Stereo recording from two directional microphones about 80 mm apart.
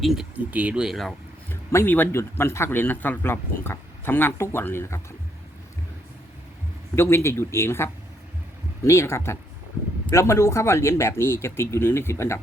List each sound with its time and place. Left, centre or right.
0.0 s speech: centre
0.3 s speech: centre
0.9 s speech: centre
1.5 s speech: left
6.9 s speech: left